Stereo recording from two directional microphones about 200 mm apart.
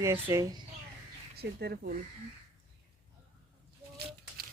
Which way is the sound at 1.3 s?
55° right (ahead or behind).